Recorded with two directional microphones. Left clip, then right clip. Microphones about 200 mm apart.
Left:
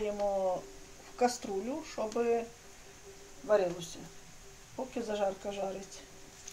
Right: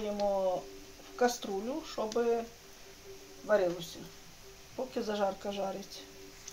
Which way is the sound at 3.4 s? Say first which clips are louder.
Even; 10° right (ahead or behind).